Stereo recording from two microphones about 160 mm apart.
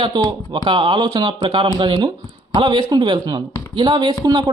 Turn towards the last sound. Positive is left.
turn(degrees=-25)  # may be behind; listen again after turning